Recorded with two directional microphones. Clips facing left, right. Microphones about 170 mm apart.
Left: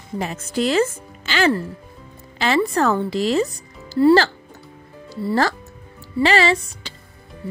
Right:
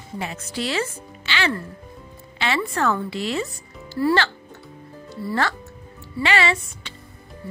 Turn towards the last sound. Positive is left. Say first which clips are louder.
# left 4 dB
turn(degrees=35)  # may be behind; listen again after turning